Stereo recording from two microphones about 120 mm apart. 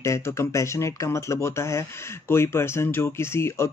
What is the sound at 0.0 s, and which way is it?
Speech, 25° left (ahead or behind).